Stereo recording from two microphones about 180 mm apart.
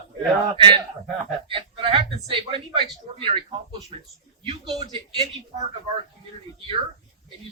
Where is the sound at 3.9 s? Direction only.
40° right (ahead or behind).